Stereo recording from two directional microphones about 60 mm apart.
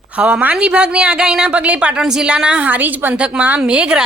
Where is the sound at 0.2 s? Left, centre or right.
Right.